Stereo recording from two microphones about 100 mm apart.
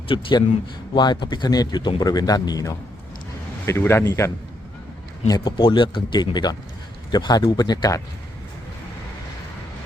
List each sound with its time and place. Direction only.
0.1 s speech: 55° left (ahead or behind); by 2.7 s 40° left (ahead or behind)
3.7 s speech: 25° left (ahead or behind)
5.5 s speech: 55° left (ahead or behind); by 8.0 s 40° left (ahead or behind)